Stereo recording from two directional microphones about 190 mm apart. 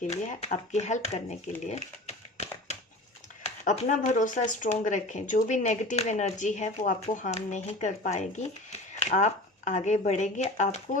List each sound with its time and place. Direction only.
0.0 s speech: 40° left (ahead or behind)